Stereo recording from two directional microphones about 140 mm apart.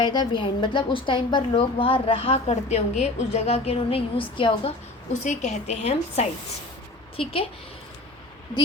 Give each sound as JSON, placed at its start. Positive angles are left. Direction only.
{"t": 0.0, "sound": "a woman's voice", "side_deg": 30}
{"t": 5.2, "sound": "a woman's voice", "side_deg": 55}
{"t": 7.2, "sound": "a woman's voice", "side_deg": 40}